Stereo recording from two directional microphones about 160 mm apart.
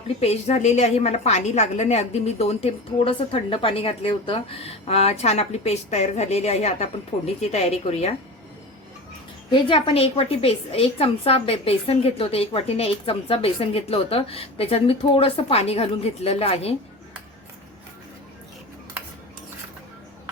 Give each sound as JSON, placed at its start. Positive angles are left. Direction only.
{"t": 0.2, "sound": "a woman's voice", "side_deg": 40}
{"t": 9.5, "sound": "a woman's voice", "side_deg": 30}